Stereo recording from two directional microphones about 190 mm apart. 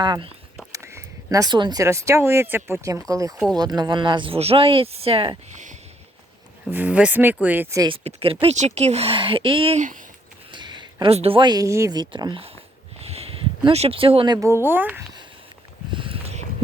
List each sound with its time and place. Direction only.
0.0 s speech: 20° right (ahead or behind)
6.7 s speech: 10° right (ahead or behind)
7.9 s speech: 30° right (ahead or behind)
10.5 s speech: 25° right (ahead or behind)
13.1 s a sound: 30° right (ahead or behind)
14.4 s speech: 10° right (ahead or behind)
15.9 s a sound: 25° right (ahead or behind)